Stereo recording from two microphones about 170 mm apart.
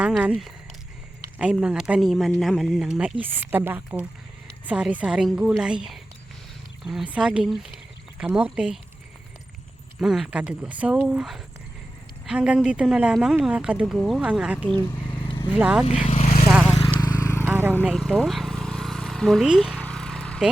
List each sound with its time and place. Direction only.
0.0 s speech: 5° right (ahead or behind)
10.0 s speech: centre (ahead or behind)
15.0 s vehicle: 30° left (ahead or behind)
15.5 s speech: 5° right (ahead or behind)
16.0 s vehicle: 35° left (ahead or behind)
16.5 s vehicle: 5° right (ahead or behind)
17.0 s vehicle: 15° left (ahead or behind)
17.4 s vehicle: 10° right (ahead or behind)
17.8 s vehicle: centre (ahead or behind)